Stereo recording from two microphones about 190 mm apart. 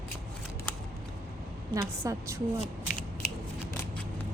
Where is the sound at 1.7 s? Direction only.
15° right (ahead or behind).